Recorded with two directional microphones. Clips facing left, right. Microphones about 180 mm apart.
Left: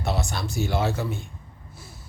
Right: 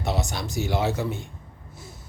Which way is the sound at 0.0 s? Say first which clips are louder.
Even; 20° right (ahead or behind).